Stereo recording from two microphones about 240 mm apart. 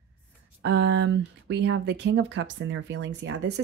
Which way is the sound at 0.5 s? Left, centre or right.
Right.